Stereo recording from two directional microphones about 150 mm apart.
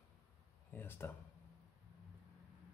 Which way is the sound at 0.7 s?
15° left (ahead or behind).